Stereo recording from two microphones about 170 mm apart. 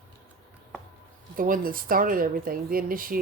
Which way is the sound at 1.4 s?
55° right (ahead or behind).